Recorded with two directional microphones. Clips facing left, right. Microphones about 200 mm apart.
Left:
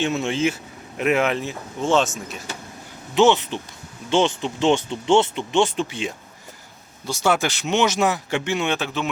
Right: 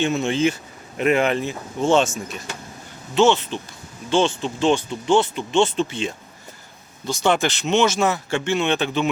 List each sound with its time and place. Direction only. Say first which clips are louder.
0.0 s speech: right 2 dB; 5° left (ahead or behind)
3.2 s speech: even; 15° left (ahead or behind)